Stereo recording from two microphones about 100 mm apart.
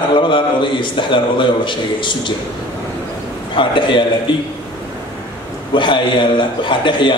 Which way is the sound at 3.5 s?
55° left (ahead or behind).